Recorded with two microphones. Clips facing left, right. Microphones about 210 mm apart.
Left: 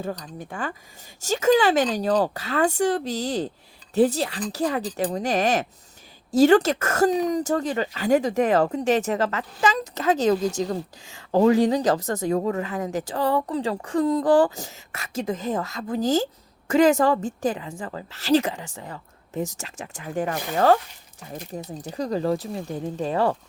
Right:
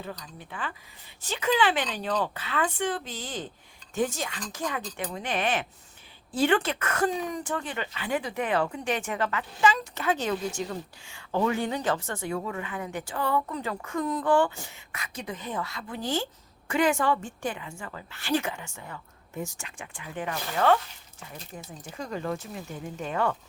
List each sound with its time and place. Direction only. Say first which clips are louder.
0.0 s speech: left 8 dB; 45° left (ahead or behind)